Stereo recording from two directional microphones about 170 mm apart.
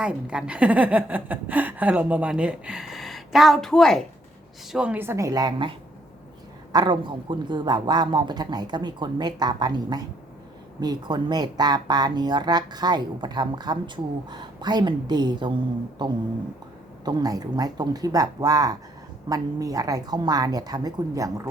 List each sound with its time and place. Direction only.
0.0 s a woman's voice: 5° right (ahead or behind); by 5.7 s 25° right (ahead or behind)
6.7 s speech: 25° right (ahead or behind)